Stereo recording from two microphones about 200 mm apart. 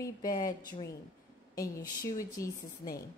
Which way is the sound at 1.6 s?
15° left (ahead or behind).